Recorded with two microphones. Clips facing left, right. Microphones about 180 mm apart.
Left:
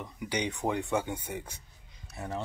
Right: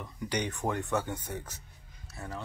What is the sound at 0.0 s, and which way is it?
Speech, 10° left (ahead or behind).